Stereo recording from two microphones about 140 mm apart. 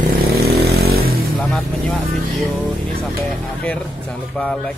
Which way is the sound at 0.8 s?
90° right.